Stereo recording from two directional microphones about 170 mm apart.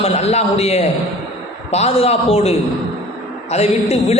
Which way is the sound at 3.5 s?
40° left (ahead or behind).